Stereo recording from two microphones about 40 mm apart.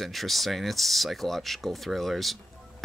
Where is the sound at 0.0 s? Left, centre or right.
Centre.